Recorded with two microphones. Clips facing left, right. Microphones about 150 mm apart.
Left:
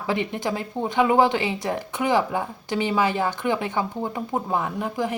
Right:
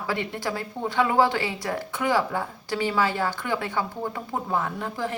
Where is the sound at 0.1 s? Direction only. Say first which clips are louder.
Left 4 dB; 20° left (ahead or behind).